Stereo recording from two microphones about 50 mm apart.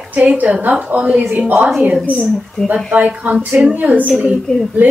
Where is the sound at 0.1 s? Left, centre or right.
Right.